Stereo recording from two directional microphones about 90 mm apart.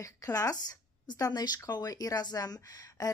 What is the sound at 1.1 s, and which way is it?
Speech, 50° left (ahead or behind).